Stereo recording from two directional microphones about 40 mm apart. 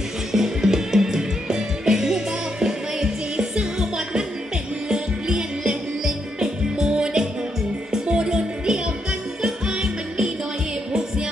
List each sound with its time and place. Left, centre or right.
0.3 s music: centre